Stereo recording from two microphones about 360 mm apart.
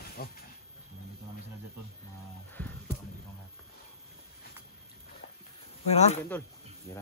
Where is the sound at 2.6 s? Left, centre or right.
Centre.